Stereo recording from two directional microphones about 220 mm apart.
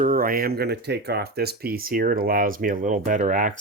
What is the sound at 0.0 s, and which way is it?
Speech, 40° right (ahead or behind).